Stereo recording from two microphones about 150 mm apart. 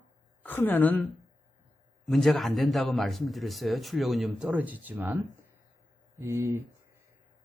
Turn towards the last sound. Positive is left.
turn(degrees=-15)  # may be behind; listen again after turning